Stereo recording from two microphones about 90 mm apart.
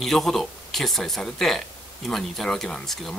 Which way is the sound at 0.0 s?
5° left (ahead or behind).